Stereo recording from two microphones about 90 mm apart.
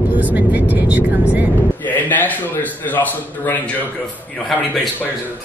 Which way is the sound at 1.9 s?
20° left (ahead or behind).